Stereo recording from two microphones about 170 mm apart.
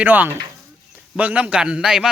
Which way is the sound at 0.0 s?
10° right (ahead or behind).